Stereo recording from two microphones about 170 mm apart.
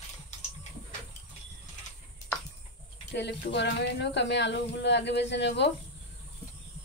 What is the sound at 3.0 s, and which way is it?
Speech, 90° left.